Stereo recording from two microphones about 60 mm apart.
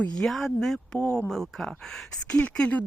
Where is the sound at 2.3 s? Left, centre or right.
Centre.